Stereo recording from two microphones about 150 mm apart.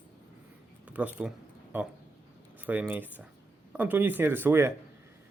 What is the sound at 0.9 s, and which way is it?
Speech, 10° right (ahead or behind).